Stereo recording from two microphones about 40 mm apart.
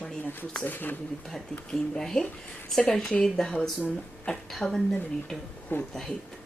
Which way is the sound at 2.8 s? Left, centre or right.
Left.